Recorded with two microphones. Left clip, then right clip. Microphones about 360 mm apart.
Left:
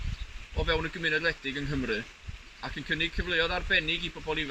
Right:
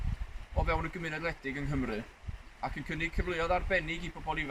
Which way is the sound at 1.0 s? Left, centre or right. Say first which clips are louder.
Left 8 dB; centre.